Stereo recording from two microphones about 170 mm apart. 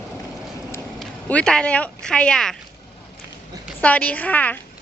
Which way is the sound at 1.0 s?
5° left (ahead or behind).